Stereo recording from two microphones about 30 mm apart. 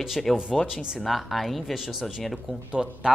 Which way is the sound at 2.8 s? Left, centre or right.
Centre.